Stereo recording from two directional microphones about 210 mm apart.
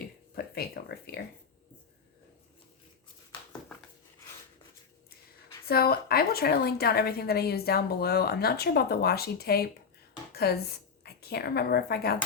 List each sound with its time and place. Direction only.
0.3 s speech: 45° left (ahead or behind)
5.6 s a woman's voice: 45° left (ahead or behind)